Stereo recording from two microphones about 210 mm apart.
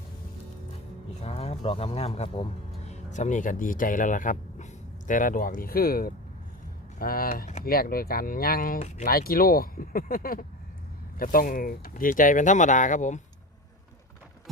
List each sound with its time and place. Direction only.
1.2 s speech: 30° left (ahead or behind)